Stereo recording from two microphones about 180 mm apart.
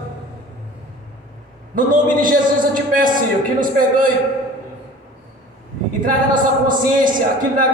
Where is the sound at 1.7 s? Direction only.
50° right (ahead or behind).